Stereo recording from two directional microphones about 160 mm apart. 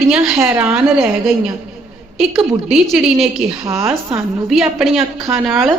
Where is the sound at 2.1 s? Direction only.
5° right (ahead or behind).